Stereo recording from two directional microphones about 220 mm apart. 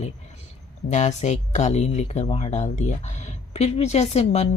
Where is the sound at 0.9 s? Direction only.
30° left (ahead or behind).